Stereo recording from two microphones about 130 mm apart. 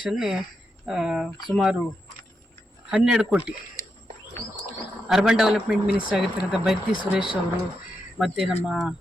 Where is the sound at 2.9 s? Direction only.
5° right (ahead or behind).